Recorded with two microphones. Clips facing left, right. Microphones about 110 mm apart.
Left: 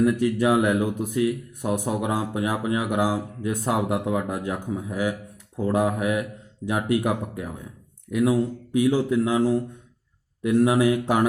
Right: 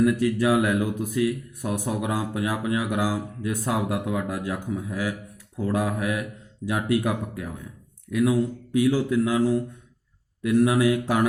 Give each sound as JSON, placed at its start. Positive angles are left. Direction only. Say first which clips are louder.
{"t": 0.0, "sound": "speech", "louder": "even", "side_deg": 20}